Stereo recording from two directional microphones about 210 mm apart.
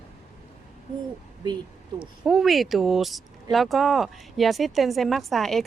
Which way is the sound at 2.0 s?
Centre (ahead or behind).